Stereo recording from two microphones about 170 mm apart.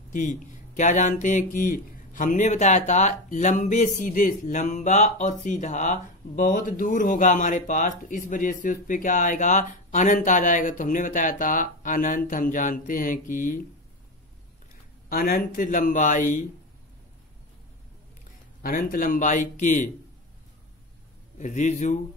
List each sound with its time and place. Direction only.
0.1 s speech: 45° left (ahead or behind)
15.0 s speech: 60° left (ahead or behind)
18.6 s speech: 55° left (ahead or behind)
21.4 s speech: 45° left (ahead or behind)